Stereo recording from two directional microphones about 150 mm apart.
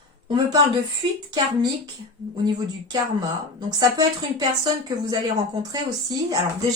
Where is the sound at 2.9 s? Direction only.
30° right (ahead or behind).